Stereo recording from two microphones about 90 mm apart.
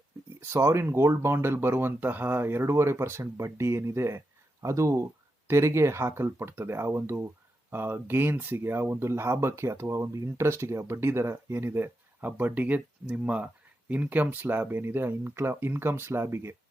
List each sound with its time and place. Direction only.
0.3 s speech: 30° right (ahead or behind)